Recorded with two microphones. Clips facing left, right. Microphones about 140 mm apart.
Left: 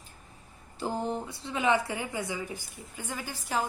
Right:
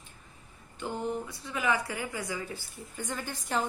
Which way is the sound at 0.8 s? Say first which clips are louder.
Left 2 dB; 35° left (ahead or behind).